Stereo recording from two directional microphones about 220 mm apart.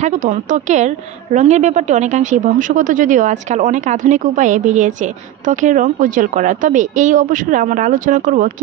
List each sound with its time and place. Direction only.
0.0 s a woman's voice: 35° right (ahead or behind)